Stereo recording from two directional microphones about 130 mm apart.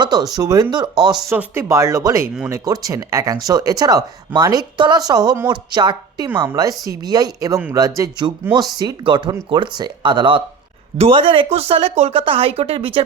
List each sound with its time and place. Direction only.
0.0 s speech: 30° right (ahead or behind)
1.3 s speech: 20° right (ahead or behind); by 13.0 s 45° right (ahead or behind)